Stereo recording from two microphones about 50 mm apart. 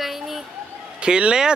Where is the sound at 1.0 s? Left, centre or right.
Centre.